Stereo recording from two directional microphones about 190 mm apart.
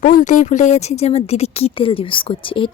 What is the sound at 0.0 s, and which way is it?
Speech, 45° left (ahead or behind).